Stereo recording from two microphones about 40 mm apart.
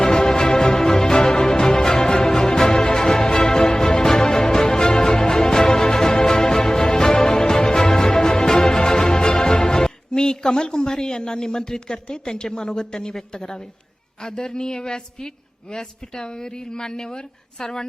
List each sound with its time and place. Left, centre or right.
0.0 s music: centre
12.0 s a woman's voice: centre